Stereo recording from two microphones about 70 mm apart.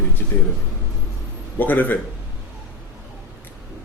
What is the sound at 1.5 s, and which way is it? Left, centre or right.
Speech, left.